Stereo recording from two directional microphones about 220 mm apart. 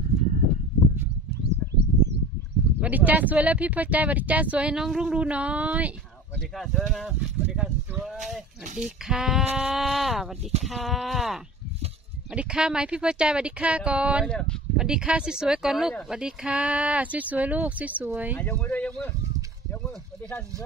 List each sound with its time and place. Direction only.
1.4 s a sound: 50° right (ahead or behind)
2.8 s speech: 5° right (ahead or behind)
18.3 s speech: 5° left (ahead or behind)